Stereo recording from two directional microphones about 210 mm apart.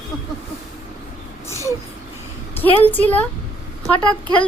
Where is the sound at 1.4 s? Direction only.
15° left (ahead or behind).